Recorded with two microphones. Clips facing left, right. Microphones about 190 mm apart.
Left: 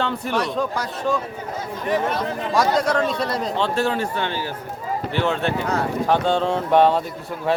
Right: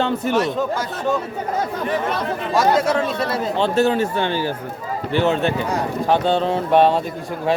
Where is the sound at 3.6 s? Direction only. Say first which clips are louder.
Right 6 dB; 20° right (ahead or behind).